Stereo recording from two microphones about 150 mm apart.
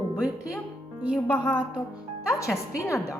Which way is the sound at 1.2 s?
10° left (ahead or behind).